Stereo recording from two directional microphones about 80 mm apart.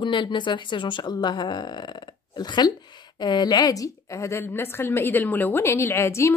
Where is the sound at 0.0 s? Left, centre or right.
Left.